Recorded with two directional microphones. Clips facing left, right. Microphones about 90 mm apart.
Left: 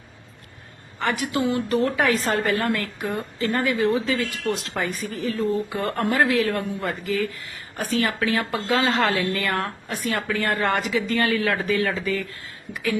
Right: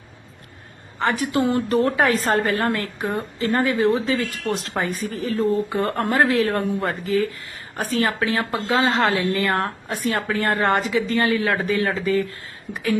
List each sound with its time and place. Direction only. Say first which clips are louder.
0.9 s a woman's voice: right 3 dB; 35° right (ahead or behind)